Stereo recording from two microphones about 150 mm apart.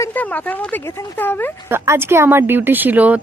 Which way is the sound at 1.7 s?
15° right (ahead or behind).